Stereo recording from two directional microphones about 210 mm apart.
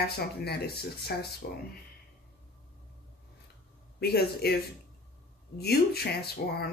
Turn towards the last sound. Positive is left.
turn(degrees=50)  # may be behind; listen again after turning